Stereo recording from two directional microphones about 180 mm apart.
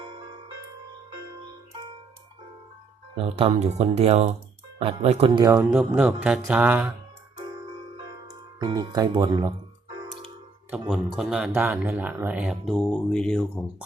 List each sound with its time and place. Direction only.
3.2 s speech: 30° right (ahead or behind)
5.4 s speech: 20° right (ahead or behind)
5.7 s speech: 5° right (ahead or behind)
8.3 s speech: 20° right (ahead or behind)
9.9 s music: 25° right (ahead or behind)
10.7 s speech: 5° right (ahead or behind)